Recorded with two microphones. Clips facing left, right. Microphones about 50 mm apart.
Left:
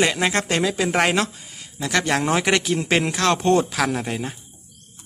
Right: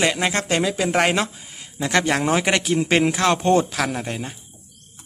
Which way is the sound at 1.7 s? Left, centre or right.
Centre.